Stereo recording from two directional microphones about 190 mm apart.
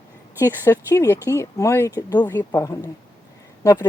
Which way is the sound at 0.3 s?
10° left (ahead or behind).